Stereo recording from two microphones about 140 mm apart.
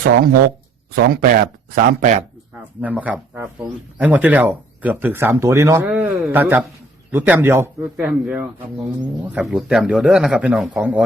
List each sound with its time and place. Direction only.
0.9 s speech: 90° right; by 2.2 s 65° right (ahead or behind)
2.8 s speech: 10° right (ahead or behind)
5.9 s speech: 10° right (ahead or behind)